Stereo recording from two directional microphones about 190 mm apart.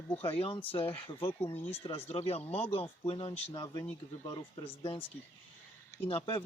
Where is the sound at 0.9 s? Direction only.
10° left (ahead or behind).